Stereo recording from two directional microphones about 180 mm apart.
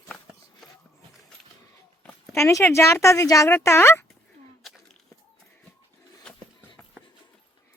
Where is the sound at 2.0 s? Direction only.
15° left (ahead or behind).